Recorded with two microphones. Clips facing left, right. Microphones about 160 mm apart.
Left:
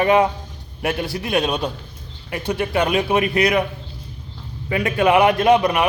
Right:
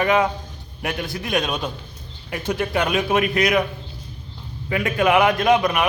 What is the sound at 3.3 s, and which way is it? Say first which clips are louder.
Speech: left 1 dB; 30° left (ahead or behind).